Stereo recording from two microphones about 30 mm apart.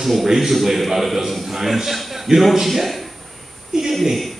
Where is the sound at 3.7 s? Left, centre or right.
Centre.